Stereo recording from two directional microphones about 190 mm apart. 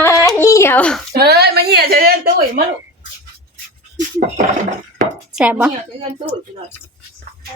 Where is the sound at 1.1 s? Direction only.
55° right (ahead or behind).